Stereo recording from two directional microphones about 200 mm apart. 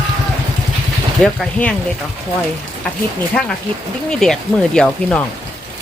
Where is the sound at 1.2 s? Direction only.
5° left (ahead or behind).